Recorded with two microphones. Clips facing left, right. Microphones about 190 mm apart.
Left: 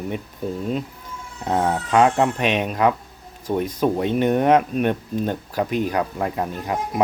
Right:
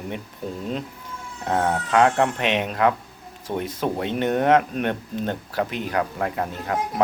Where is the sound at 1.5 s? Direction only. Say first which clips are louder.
Left 2 dB; 20° left (ahead or behind).